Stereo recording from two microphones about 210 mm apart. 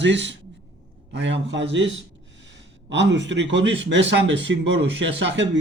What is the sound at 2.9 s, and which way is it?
A man's voice, 55° right (ahead or behind).